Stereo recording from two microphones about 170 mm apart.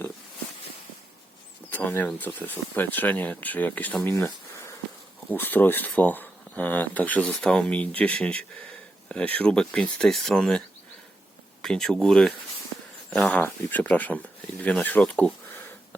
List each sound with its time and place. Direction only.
1.7 s speech: 10° left (ahead or behind)
11.6 s speech: 5° left (ahead or behind)